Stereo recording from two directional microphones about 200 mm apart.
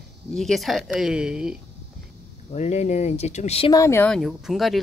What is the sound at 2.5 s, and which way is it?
Speech, 35° left (ahead or behind).